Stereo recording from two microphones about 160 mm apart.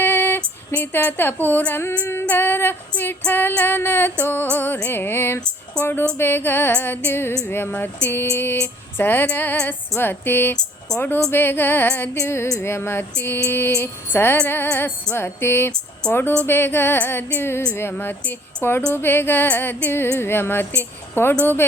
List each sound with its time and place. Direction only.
0.0 s music: 15° left (ahead or behind)
10.8 s a woman's voice: 10° left (ahead or behind)
11.3 s music: 15° left (ahead or behind)